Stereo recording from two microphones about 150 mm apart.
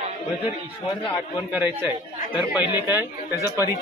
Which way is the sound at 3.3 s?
20° left (ahead or behind).